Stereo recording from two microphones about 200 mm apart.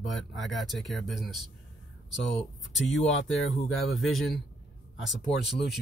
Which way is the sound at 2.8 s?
65° left (ahead or behind).